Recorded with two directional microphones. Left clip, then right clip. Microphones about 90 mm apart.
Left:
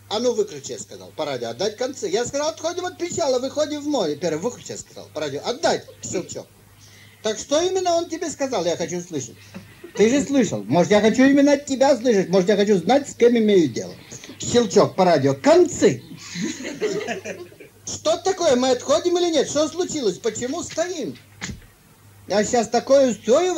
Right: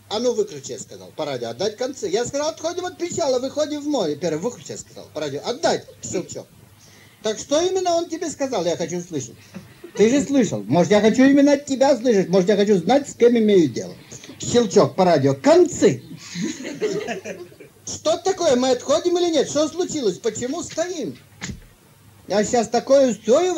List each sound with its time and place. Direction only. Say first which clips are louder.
0.1 s speech: even; 25° left (ahead or behind)